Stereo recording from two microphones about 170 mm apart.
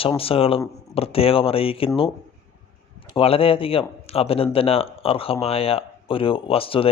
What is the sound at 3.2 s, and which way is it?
Speech, 35° left (ahead or behind).